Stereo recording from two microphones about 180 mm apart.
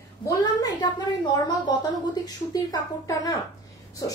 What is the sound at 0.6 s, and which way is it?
A woman's voice, 25° left (ahead or behind).